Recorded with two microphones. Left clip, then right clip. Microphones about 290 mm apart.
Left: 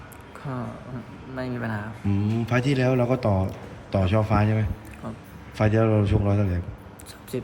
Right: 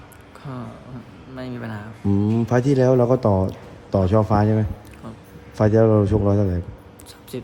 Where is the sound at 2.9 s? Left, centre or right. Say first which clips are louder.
Right 6 dB; left.